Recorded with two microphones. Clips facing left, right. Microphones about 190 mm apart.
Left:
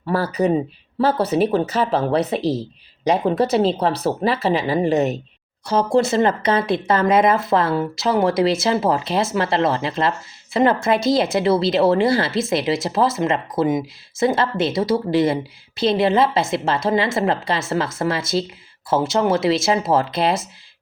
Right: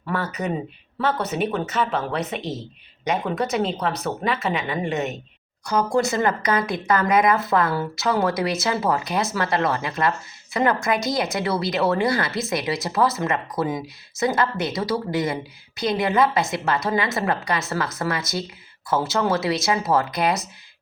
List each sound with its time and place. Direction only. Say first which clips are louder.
0.0 s speech: left 7 dB; 35° left (ahead or behind)